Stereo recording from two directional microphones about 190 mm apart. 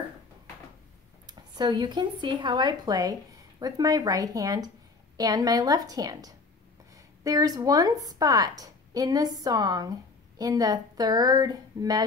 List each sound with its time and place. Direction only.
1.2 s a woman's voice: 20° right (ahead or behind)